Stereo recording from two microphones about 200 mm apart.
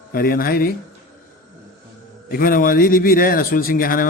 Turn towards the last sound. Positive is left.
turn(degrees=45)  # may be behind; listen again after turning